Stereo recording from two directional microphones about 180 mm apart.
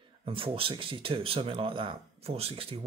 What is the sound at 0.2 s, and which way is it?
Speech, 30° right (ahead or behind).